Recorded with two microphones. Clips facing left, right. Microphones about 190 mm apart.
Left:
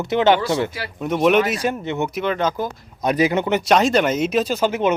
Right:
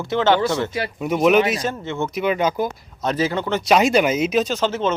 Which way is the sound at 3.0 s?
15° left (ahead or behind).